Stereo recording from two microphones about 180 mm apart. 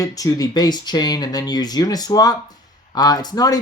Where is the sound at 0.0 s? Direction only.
20° left (ahead or behind).